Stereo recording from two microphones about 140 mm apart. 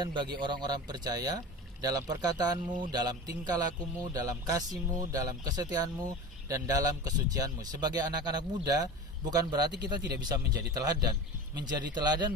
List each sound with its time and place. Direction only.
0.0 s speech: 35° right (ahead or behind)